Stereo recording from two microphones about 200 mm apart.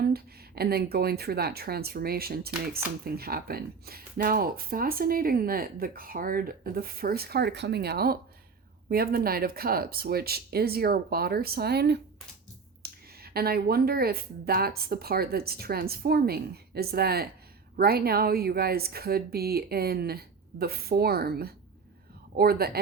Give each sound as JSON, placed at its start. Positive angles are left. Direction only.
{"t": 0.0, "sound": "speech", "side_deg": -50}